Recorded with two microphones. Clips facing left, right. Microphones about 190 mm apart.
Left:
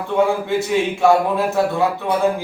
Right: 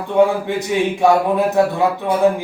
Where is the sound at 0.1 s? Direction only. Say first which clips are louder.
Right 3 dB; 20° right (ahead or behind).